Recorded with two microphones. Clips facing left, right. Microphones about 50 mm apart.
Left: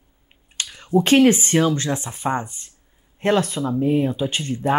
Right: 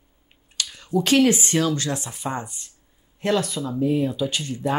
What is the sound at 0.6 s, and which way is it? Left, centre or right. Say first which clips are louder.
Speech: left 4 dB; left.